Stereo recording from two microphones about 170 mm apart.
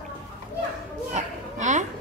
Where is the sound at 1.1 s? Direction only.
45° right (ahead or behind).